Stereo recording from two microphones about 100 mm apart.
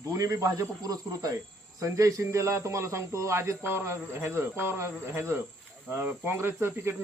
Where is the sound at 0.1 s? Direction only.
35° right (ahead or behind).